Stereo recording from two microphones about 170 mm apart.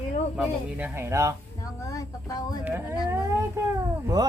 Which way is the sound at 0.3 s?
5° right (ahead or behind).